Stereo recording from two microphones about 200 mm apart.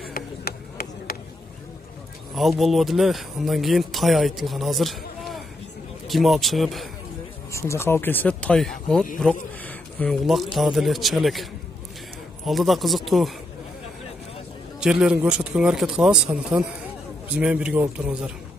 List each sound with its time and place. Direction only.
0.1 s a sound: 50° left (ahead or behind)
2.3 s a man's voice: centre (ahead or behind)
7.5 s a man's voice: 15° left (ahead or behind)
12.4 s a man's voice: centre (ahead or behind)
14.8 s a man's voice: 5° right (ahead or behind)